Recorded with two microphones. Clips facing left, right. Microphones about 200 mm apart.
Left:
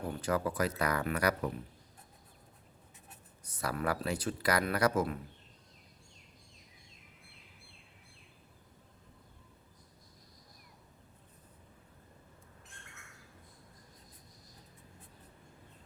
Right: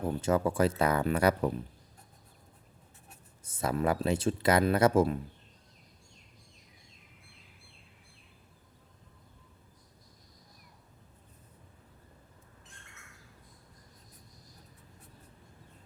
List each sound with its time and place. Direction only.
0.0 s speech: 25° right (ahead or behind)
3.4 s speech: 25° right (ahead or behind)